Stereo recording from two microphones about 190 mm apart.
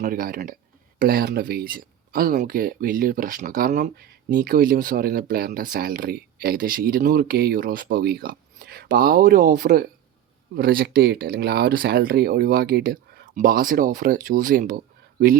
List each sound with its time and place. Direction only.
0.0 s speech: 50° right (ahead or behind)